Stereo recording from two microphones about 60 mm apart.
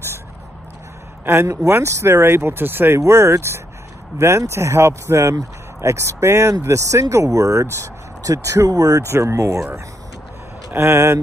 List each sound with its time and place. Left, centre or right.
1.2 s speech: right
3.0 s speech: right
6.6 s speech: right
9.2 s speech: right
10.8 s speech: right